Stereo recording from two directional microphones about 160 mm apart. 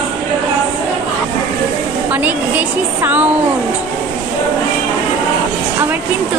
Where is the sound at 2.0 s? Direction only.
10° right (ahead or behind).